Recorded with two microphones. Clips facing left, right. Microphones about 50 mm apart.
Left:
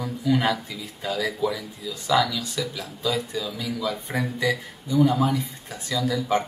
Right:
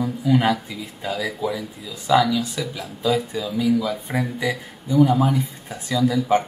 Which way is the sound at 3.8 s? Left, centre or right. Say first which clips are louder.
Right 2 dB; centre.